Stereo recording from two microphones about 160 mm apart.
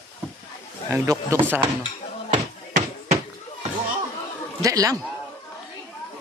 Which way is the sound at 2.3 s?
50° right (ahead or behind).